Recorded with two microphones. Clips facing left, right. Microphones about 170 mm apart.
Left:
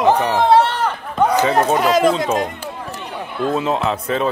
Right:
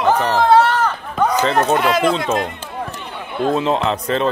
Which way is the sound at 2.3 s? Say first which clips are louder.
Even; 10° left (ahead or behind).